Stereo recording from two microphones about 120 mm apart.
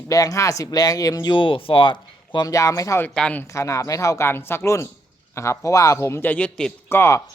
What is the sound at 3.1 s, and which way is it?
Speech, 10° left (ahead or behind).